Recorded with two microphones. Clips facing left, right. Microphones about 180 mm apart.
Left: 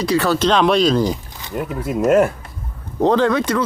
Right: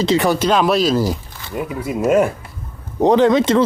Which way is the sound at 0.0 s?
20° right (ahead or behind).